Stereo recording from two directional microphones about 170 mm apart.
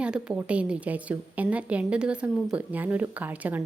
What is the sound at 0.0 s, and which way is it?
A woman's voice, 5° right (ahead or behind).